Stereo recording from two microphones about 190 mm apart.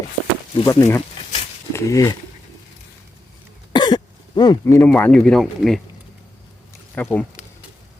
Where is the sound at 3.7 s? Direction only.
25° left (ahead or behind); by 5.8 s centre (ahead or behind).